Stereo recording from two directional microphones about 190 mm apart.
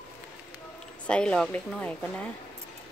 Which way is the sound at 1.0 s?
5° left (ahead or behind).